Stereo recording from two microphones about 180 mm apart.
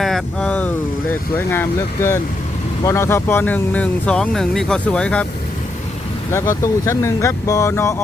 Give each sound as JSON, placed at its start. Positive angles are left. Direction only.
{"t": 0.0, "sound": "speech", "side_deg": 5}
{"t": 6.3, "sound": "speech", "side_deg": 15}